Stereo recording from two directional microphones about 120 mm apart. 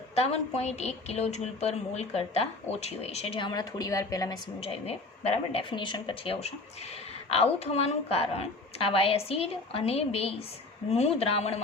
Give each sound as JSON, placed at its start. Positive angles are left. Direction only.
{"t": 0.2, "sound": "a woman's voice", "side_deg": 60}
{"t": 4.6, "sound": "speech", "side_deg": 55}
{"t": 7.3, "sound": "a woman's voice", "side_deg": 55}